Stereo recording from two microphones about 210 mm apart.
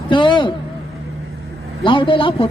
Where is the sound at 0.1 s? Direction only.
25° left (ahead or behind).